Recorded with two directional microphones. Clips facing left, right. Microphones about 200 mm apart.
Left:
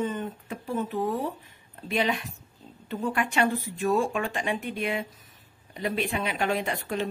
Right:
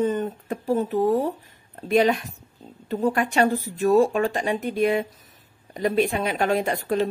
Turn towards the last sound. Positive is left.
turn(degrees=-40)  # may be behind; listen again after turning